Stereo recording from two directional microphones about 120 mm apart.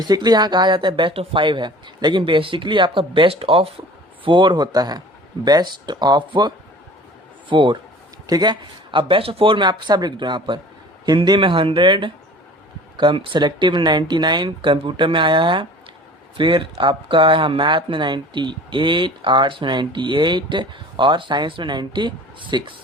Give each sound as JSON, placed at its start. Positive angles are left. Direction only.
{"t": 0.1, "sound": "speech", "side_deg": -35}
{"t": 7.5, "sound": "speech", "side_deg": -45}